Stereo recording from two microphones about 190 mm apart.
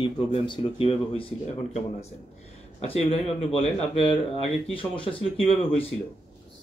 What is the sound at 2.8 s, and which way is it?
Speech, 30° left (ahead or behind).